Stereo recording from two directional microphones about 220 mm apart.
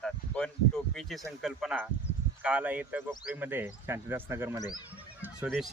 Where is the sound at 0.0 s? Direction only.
5° left (ahead or behind).